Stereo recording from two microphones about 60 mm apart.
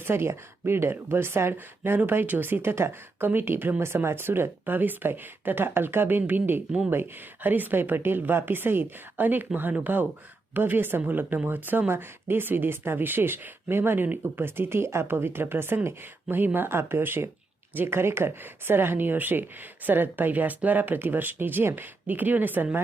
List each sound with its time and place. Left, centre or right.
0.0 s speech: right